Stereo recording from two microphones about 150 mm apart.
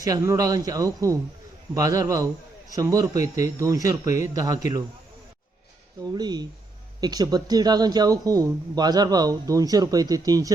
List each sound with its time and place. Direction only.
0.0 s a man's voice: 20° right (ahead or behind)
6.1 s a man's voice: 25° right (ahead or behind)